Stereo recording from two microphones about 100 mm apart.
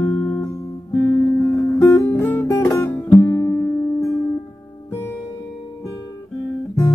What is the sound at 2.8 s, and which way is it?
Music, 20° left (ahead or behind).